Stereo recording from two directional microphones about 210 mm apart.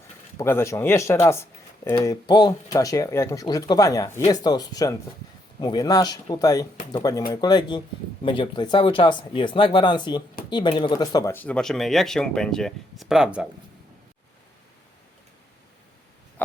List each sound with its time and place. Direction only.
0.3 s speech: 10° left (ahead or behind); by 13.5 s 5° right (ahead or behind)